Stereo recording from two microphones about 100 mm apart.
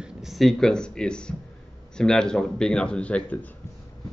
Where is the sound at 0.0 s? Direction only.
5° right (ahead or behind); by 3.3 s 15° left (ahead or behind).